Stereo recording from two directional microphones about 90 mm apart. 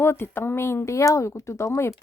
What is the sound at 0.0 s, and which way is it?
Speech, 25° left (ahead or behind).